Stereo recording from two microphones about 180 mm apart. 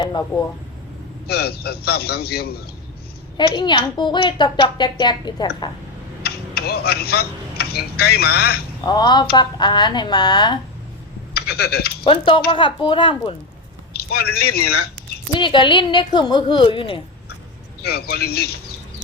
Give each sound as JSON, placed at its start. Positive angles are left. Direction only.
{"t": 0.0, "sound": "speech", "side_deg": 20}
{"t": 1.3, "sound": "a man's voice", "side_deg": 60}
{"t": 3.3, "sound": "speech", "side_deg": 25}
{"t": 6.2, "sound": "speech", "side_deg": 60}
{"t": 8.9, "sound": "speech", "side_deg": 25}
{"t": 11.3, "sound": "speech", "side_deg": 60}
{"t": 12.0, "sound": "speech", "side_deg": 30}
{"t": 13.9, "sound": "a man's voice", "side_deg": 60}
{"t": 15.3, "sound": "speech", "side_deg": 25}
{"t": 17.8, "sound": "a man's voice", "side_deg": 60}